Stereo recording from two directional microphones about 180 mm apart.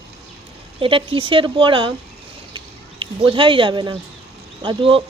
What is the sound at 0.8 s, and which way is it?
Speech, 30° right (ahead or behind).